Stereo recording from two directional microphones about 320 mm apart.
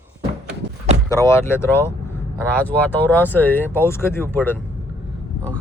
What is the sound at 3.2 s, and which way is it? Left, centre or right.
Speech, centre.